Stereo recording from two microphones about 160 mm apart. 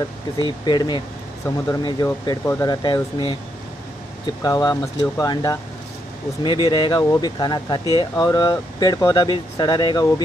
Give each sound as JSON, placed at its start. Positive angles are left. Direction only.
{"t": 0.4, "sound": "speech", "side_deg": 25}
{"t": 4.4, "sound": "speech", "side_deg": 20}